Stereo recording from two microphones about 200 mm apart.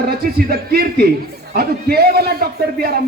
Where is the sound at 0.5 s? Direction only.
50° right (ahead or behind).